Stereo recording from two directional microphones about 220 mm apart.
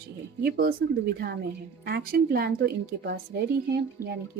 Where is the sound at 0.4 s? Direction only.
45° right (ahead or behind).